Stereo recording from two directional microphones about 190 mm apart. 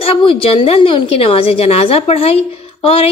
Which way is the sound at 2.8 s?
30° left (ahead or behind).